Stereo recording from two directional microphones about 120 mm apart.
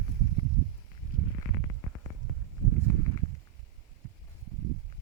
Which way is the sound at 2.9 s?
20° left (ahead or behind).